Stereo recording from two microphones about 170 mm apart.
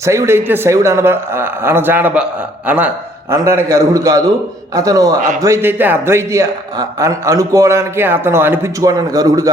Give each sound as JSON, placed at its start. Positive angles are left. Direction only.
{"t": 0.0, "sound": "a man's voice", "side_deg": -15}